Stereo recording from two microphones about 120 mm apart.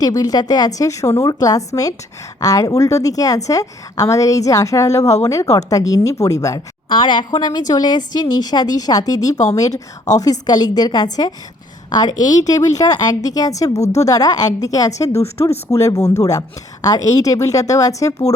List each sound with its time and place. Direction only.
0.0 s a woman's voice: 30° left (ahead or behind)
6.8 s a woman's voice: 40° left (ahead or behind)